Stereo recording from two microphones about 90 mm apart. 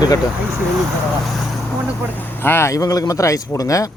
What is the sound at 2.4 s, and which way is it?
Speech, 25° left (ahead or behind).